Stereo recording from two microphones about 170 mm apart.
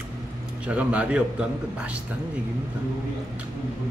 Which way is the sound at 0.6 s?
10° right (ahead or behind).